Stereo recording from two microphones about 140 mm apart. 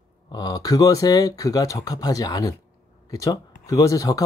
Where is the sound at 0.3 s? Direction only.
30° left (ahead or behind).